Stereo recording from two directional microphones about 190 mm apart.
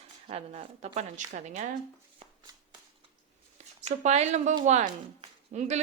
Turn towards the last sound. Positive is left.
turn(degrees=-35)  # may be behind; listen again after turning